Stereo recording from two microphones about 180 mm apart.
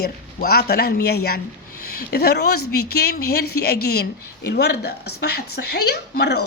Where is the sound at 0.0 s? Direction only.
60° left (ahead or behind).